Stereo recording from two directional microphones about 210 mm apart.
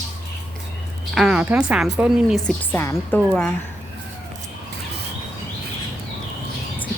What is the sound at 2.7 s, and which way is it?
Speech, 10° left (ahead or behind).